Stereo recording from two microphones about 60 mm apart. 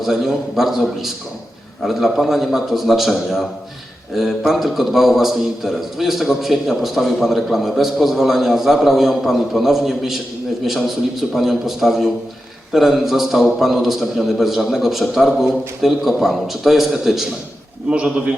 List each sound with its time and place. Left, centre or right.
0.0 s a man's voice: centre
1.8 s a man's voice: centre
17.8 s a man's voice: centre